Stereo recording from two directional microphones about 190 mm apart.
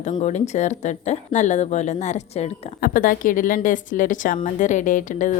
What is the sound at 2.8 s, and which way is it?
A woman's voice, 45° left (ahead or behind).